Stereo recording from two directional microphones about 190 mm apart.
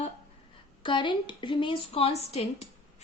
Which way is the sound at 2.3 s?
35° left (ahead or behind).